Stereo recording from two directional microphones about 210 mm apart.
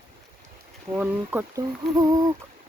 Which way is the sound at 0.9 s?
5° right (ahead or behind).